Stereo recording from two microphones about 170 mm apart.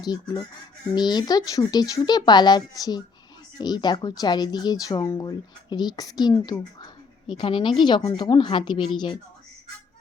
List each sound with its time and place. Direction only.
0.0 s speech: 25° left (ahead or behind)